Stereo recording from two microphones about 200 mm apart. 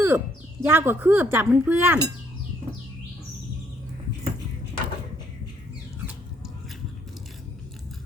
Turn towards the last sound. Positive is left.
turn(degrees=-5)  # may be behind; listen again after turning